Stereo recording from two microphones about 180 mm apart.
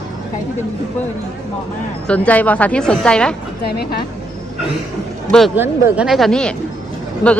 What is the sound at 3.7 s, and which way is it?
Speech, 60° left (ahead or behind).